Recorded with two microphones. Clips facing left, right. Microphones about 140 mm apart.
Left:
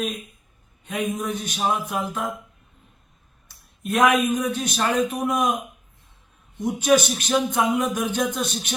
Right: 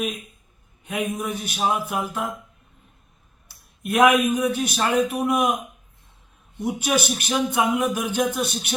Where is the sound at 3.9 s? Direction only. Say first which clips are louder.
Right 2 dB; 10° right (ahead or behind).